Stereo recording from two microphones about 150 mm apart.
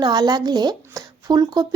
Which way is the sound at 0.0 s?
25° right (ahead or behind).